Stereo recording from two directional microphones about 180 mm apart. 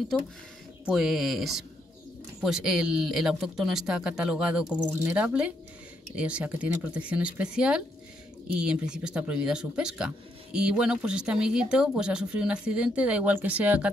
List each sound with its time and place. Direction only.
0.8 s speech: centre (ahead or behind)